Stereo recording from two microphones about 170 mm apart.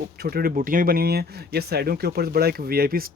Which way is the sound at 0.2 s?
60° right (ahead or behind).